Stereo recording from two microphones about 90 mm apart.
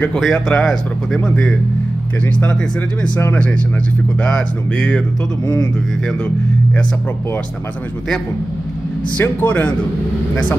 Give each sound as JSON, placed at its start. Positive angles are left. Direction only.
{"t": 0.2, "sound": "speech", "side_deg": 10}
{"t": 4.2, "sound": "speech", "side_deg": 10}
{"t": 6.0, "sound": "speech", "side_deg": 10}
{"t": 9.1, "sound": "speech", "side_deg": 20}